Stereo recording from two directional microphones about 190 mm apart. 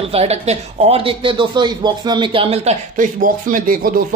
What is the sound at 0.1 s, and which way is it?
Speech, 35° right (ahead or behind).